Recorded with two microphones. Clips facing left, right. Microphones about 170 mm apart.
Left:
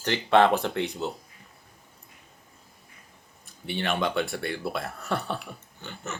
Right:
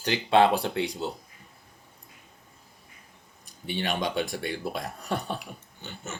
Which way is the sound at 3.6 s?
15° right (ahead or behind).